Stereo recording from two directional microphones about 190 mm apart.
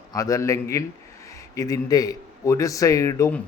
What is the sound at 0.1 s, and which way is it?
A man's voice, 20° left (ahead or behind).